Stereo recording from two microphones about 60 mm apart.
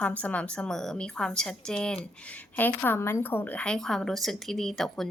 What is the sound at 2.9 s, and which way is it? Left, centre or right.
Speech, left.